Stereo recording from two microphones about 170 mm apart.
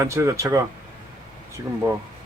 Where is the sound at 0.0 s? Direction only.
15° right (ahead or behind).